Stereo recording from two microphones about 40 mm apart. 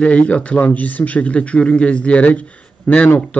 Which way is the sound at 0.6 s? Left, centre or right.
Left.